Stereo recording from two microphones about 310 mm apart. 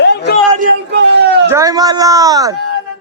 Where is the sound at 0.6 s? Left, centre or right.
Right.